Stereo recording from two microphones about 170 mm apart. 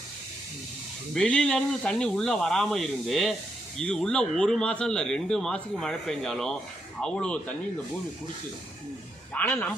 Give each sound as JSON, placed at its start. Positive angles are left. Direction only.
{"t": 1.1, "sound": "speech", "side_deg": 5}
{"t": 9.3, "sound": "speech", "side_deg": 10}